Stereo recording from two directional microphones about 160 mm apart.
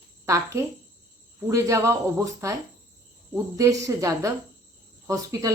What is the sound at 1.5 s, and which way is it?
Speech, 20° right (ahead or behind).